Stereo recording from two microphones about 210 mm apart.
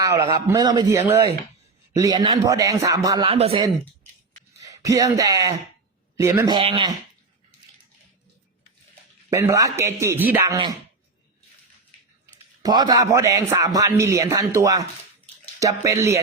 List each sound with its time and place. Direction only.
0.0 s speech: 20° right (ahead or behind)
3.2 s speech: 30° right (ahead or behind)
4.6 s speech: 15° right (ahead or behind)
9.3 s speech: 15° right (ahead or behind)
12.2 s speech: 20° right (ahead or behind)